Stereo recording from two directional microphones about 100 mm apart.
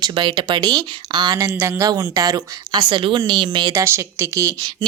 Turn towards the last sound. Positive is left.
turn(degrees=-30)  # may be behind; listen again after turning